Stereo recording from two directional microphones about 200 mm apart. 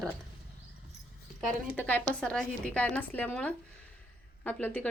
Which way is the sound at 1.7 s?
10° left (ahead or behind).